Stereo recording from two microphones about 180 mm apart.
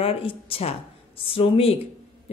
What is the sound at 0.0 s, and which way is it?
Speech, 30° left (ahead or behind).